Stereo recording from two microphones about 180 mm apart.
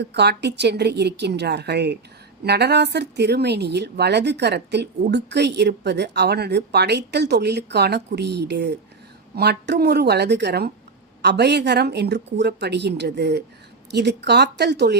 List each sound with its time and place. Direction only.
0.0 s speech: 70° right (ahead or behind)